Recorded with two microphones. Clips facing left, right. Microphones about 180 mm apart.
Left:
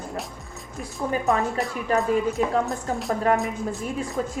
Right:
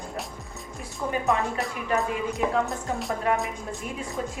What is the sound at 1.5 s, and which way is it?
Speech, centre (ahead or behind).